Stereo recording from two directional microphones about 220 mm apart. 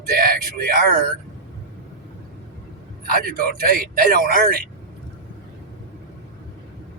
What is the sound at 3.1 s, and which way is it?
Speech, 40° right (ahead or behind).